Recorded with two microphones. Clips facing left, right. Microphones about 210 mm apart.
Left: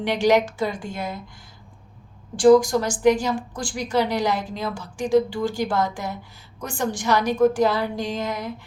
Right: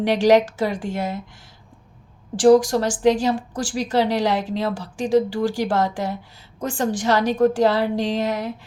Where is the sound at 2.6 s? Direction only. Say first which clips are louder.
Right 1 dB; 90° right.